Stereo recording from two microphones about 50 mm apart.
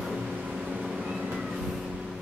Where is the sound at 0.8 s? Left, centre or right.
Centre.